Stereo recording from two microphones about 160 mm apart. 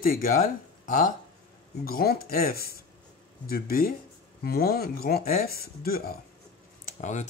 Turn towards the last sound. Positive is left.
turn(degrees=45)  # may be behind; listen again after turning